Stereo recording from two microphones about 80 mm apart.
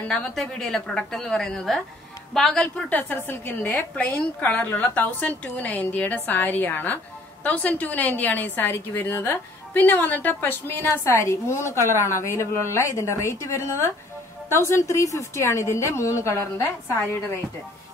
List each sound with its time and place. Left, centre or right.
0.1 s a woman's voice: centre
2.9 s a woman's voice: left